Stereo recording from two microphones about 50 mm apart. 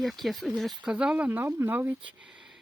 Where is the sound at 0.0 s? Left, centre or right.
Centre.